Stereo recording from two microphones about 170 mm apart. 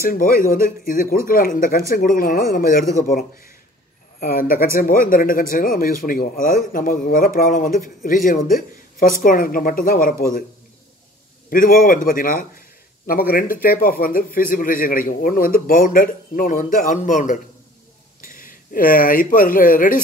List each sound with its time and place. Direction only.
0.0 s speech: 60° left (ahead or behind)
11.5 s speech: 55° left (ahead or behind)